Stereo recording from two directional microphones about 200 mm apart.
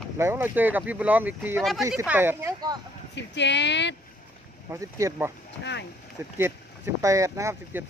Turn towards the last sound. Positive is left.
turn(degrees=-15)  # may be behind; listen again after turning